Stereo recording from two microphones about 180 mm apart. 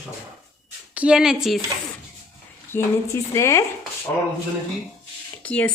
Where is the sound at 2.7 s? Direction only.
15° left (ahead or behind).